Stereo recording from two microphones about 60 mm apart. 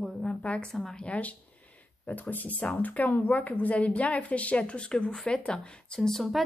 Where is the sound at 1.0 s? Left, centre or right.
Left.